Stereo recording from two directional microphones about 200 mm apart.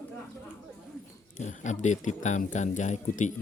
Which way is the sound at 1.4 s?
35° left (ahead or behind).